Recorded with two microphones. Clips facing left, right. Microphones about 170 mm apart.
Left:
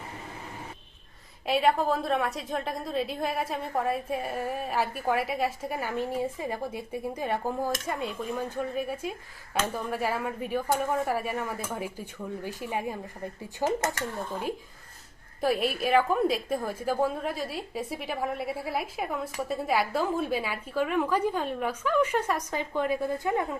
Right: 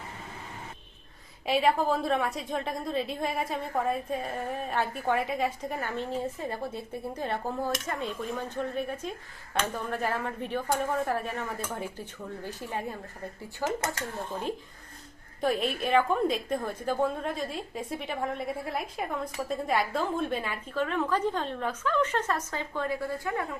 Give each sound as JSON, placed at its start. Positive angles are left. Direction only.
{"t": 1.5, "sound": "a woman's voice", "side_deg": 0}
{"t": 15.4, "sound": "a woman's voice", "side_deg": 5}